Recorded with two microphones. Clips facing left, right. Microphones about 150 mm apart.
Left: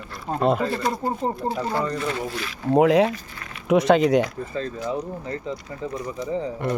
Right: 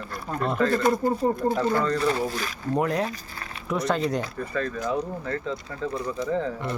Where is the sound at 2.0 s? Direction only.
35° right (ahead or behind).